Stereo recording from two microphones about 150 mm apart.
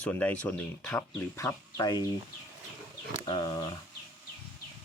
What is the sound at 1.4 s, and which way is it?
Speech, 20° left (ahead or behind).